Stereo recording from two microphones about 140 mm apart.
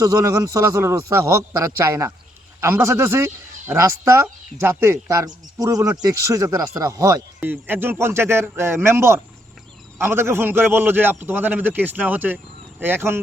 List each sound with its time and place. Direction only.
0.0 s a man's voice: 25° right (ahead or behind)
7.3 s a man's voice: 10° right (ahead or behind)